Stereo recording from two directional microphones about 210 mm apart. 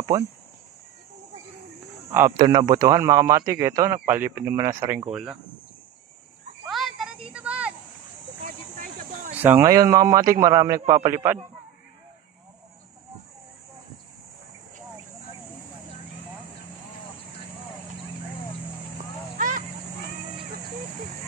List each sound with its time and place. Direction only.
0.1 s a man's voice: 15° right (ahead or behind)
2.0 s a man's voice: 15° right (ahead or behind)
6.7 s a sound: centre (ahead or behind)
8.7 s a sound: 40° right (ahead or behind)
9.4 s a man's voice: 10° right (ahead or behind)
19.3 s vehicle: 40° right (ahead or behind)